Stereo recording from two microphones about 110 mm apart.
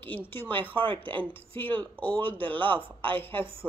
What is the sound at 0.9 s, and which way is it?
Speech, 50° right (ahead or behind).